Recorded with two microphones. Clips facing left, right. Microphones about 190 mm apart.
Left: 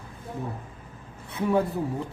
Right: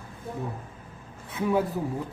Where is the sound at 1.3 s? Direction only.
Centre (ahead or behind).